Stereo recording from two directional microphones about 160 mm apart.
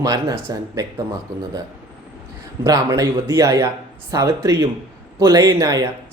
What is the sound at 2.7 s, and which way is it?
Speech, 20° right (ahead or behind).